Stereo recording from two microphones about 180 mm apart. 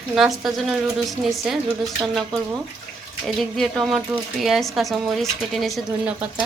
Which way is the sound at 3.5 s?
Centre (ahead or behind).